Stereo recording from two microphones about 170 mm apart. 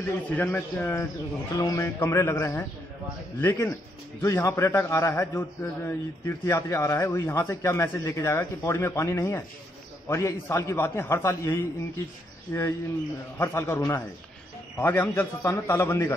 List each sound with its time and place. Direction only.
0.3 s a man's voice: 10° left (ahead or behind)